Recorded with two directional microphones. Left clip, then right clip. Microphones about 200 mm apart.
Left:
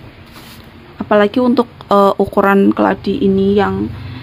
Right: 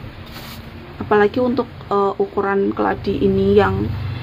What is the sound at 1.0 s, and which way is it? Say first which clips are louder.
Speech: left 3 dB; 55° left (ahead or behind).